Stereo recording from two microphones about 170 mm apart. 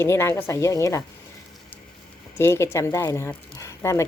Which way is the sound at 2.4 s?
15° left (ahead or behind).